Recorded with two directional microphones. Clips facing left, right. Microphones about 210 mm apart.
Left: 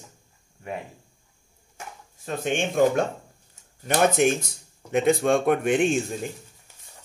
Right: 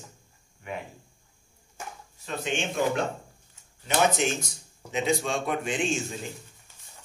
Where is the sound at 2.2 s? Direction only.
50° left (ahead or behind).